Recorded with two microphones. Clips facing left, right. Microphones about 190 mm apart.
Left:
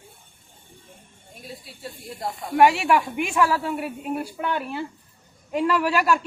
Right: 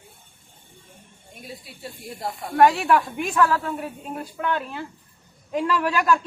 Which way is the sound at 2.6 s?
10° left (ahead or behind).